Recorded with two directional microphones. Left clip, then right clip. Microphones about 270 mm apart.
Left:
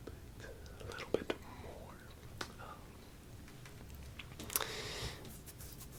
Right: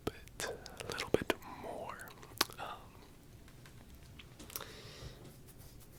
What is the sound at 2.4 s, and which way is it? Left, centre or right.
Whispering, right.